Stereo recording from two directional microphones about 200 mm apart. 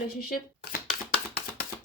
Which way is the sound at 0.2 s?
50° left (ahead or behind).